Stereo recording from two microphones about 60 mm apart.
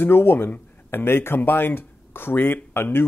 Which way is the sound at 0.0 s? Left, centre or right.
Left.